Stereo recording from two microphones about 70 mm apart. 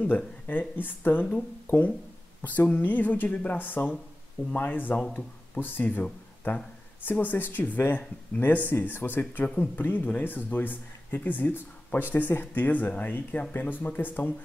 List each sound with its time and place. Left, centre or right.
0.0 s speech: left